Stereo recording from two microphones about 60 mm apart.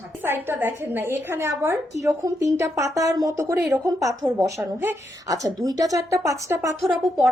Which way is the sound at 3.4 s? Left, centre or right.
Right.